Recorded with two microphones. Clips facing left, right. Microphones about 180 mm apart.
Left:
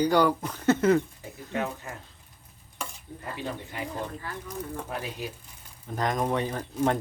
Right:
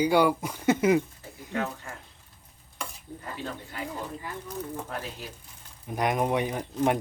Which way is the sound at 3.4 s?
15° left (ahead or behind).